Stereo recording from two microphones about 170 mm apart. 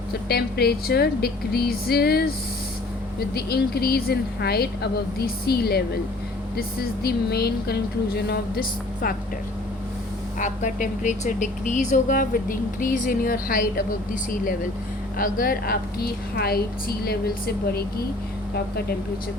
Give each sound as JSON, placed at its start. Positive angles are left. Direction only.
{"t": 0.1, "sound": "a woman's voice", "side_deg": 70}
{"t": 3.3, "sound": "a woman's voice", "side_deg": 70}
{"t": 10.3, "sound": "a woman's voice", "side_deg": 50}